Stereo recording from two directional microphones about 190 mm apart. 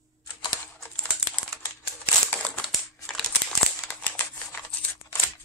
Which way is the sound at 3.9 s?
10° left (ahead or behind).